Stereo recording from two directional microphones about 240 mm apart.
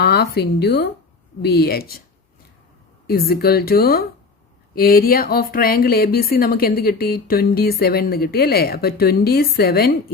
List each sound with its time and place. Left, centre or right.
0.0 s speech: left
3.1 s speech: left